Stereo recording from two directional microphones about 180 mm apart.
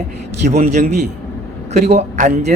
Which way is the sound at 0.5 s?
40° right (ahead or behind).